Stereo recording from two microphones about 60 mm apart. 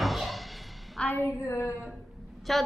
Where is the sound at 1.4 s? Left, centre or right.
Left.